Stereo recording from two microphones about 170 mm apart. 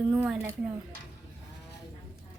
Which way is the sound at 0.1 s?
10° right (ahead or behind).